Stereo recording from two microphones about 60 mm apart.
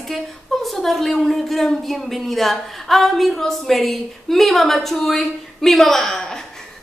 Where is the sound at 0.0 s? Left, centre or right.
Centre.